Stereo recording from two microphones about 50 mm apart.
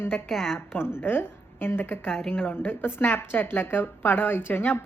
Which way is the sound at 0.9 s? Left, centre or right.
Left.